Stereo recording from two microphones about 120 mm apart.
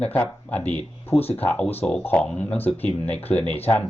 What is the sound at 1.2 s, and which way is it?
Speech, 55° left (ahead or behind).